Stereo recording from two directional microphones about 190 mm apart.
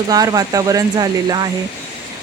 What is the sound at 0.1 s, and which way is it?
A woman's voice, 20° right (ahead or behind).